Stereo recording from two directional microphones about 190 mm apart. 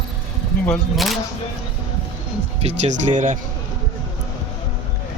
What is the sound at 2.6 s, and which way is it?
Speech, 40° right (ahead or behind).